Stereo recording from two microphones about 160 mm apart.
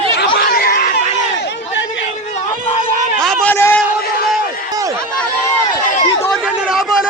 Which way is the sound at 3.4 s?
15° left (ahead or behind).